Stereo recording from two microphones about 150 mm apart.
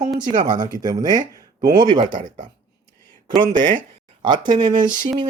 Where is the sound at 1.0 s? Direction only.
65° right (ahead or behind).